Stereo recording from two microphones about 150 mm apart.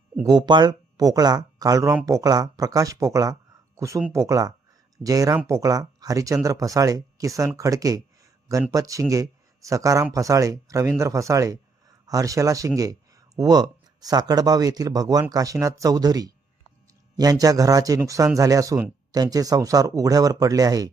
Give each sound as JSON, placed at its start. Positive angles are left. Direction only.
{"t": 0.3, "sound": "speech", "side_deg": -30}